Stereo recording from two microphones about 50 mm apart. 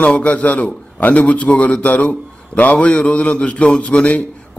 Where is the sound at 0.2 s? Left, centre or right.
Left.